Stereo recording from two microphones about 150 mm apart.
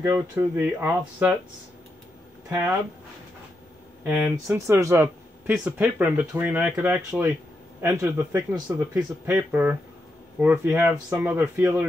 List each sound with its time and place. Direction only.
0.1 s speech: 15° right (ahead or behind)
2.5 s speech: 15° right (ahead or behind)
4.0 s speech: 10° right (ahead or behind)